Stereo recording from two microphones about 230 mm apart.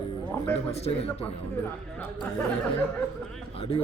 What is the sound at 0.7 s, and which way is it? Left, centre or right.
Speech, left.